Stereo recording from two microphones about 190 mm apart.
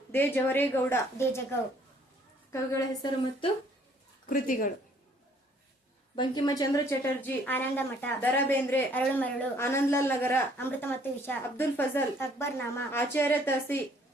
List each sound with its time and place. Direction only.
0.1 s a woman's voice: 10° left (ahead or behind)
2.5 s a woman's voice: 15° left (ahead or behind)
4.3 s speech: 45° left (ahead or behind)
6.1 s a woman's voice: 25° left (ahead or behind)